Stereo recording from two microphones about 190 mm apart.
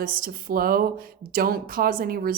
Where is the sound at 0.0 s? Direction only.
50° right (ahead or behind).